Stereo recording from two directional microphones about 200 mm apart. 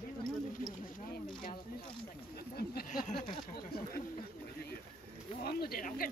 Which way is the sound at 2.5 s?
45° left (ahead or behind).